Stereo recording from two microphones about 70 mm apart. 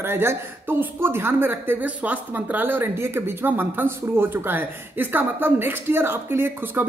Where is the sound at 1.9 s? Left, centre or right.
Right.